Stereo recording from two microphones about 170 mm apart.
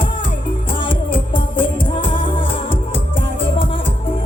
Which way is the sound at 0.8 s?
30° left (ahead or behind).